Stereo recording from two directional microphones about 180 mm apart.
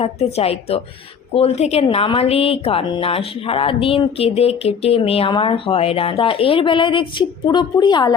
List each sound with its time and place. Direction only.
0.0 s a woman's voice: 35° left (ahead or behind)